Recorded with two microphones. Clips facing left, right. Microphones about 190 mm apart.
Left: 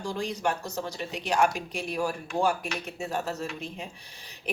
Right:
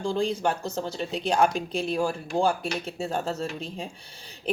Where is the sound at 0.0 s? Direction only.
30° right (ahead or behind).